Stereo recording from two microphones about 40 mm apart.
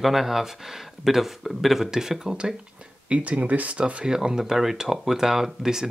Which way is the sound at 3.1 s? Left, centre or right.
Right.